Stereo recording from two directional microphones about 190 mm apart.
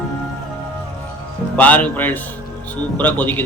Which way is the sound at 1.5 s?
5° left (ahead or behind).